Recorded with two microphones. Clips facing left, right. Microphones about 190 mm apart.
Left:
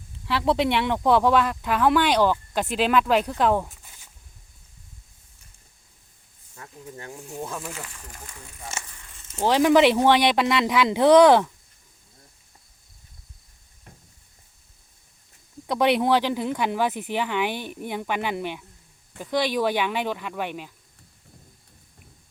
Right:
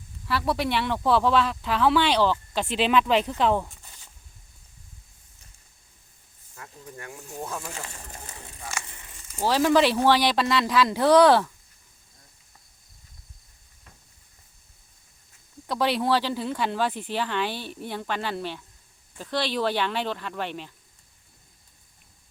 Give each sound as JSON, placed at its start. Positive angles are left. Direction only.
{"t": 0.3, "sound": "speech", "side_deg": 20}
{"t": 2.5, "sound": "speech", "side_deg": 5}
{"t": 3.3, "sound": "a sound", "side_deg": 10}
{"t": 6.9, "sound": "speech", "side_deg": 20}
{"t": 7.9, "sound": "speech", "side_deg": -40}
{"t": 8.9, "sound": "a sound", "side_deg": -20}
{"t": 9.5, "sound": "speech", "side_deg": 15}
{"t": 15.6, "sound": "speech", "side_deg": 20}